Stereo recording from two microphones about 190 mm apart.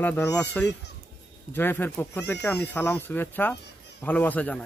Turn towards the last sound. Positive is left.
turn(degrees=10)  # may be behind; listen again after turning